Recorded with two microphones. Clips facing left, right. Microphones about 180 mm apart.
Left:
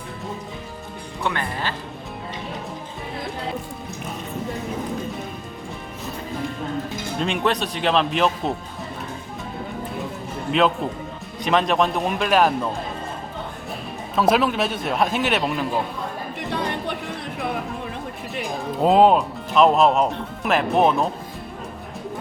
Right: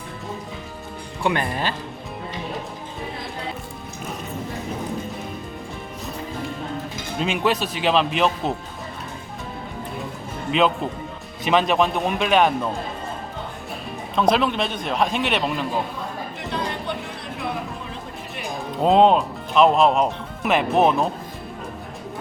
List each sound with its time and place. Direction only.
1.2 s speech: 15° right (ahead or behind)
7.2 s speech: centre (ahead or behind)
11.4 s speech: centre (ahead or behind)
14.2 s speech: 5° left (ahead or behind)
18.8 s speech: 5° left (ahead or behind)